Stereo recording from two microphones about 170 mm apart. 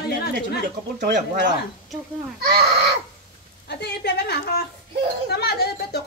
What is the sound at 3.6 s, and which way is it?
A woman's voice, 75° left (ahead or behind).